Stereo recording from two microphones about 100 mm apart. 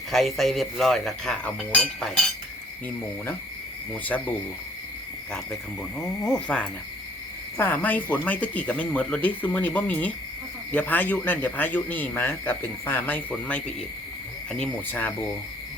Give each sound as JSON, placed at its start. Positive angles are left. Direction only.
{"t": 0.1, "sound": "speech", "side_deg": 0}
{"t": 3.9, "sound": "a man's voice", "side_deg": 15}
{"t": 6.0, "sound": "a man's voice", "side_deg": 5}
{"t": 7.5, "sound": "a man's voice", "side_deg": 20}
{"t": 14.8, "sound": "a man's voice", "side_deg": 15}